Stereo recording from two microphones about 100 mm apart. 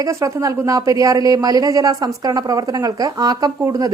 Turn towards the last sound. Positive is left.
turn(degrees=-35)  # may be behind; listen again after turning